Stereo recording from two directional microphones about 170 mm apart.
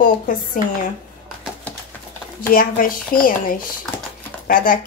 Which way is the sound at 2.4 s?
55° left (ahead or behind).